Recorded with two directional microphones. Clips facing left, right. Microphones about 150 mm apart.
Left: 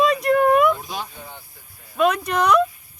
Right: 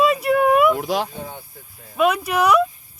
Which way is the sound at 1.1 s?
45° right (ahead or behind).